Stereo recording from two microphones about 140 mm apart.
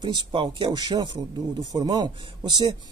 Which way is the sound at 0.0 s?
35° right (ahead or behind).